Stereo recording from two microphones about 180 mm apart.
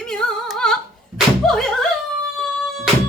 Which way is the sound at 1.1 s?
Centre (ahead or behind).